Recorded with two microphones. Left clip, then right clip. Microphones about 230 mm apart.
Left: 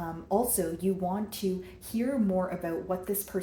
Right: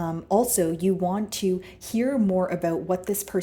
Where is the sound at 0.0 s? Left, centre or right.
Right.